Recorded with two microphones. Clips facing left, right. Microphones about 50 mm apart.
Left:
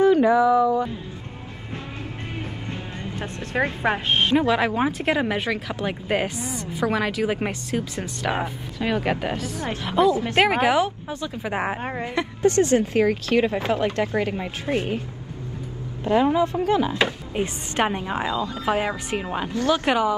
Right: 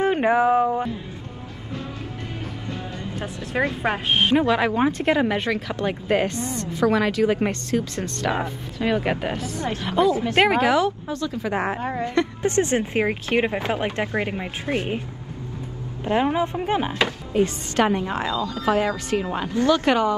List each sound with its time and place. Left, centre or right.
0.0 s speech: right
3.2 s speech: left
4.4 s speech: centre
8.7 s speech: centre
10.6 s speech: centre
12.4 s speech: right
16.0 s a woman's voice: right
17.0 s speech: centre